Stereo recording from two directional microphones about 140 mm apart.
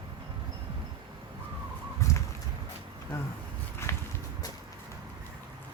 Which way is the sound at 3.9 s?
20° left (ahead or behind).